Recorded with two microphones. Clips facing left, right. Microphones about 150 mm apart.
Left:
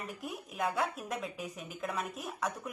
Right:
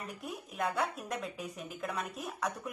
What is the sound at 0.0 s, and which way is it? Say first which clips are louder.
Speech: left 1 dB; centre (ahead or behind).